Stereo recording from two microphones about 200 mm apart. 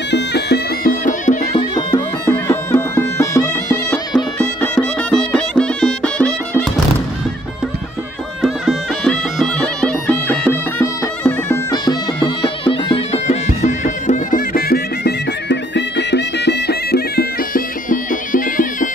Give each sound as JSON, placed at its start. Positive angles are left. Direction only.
{"t": 0.1, "sound": "bagpipes", "side_deg": 55}
{"t": 1.0, "sound": "music", "side_deg": 40}
{"t": 1.6, "sound": "music", "side_deg": 20}
{"t": 8.4, "sound": "music", "side_deg": 0}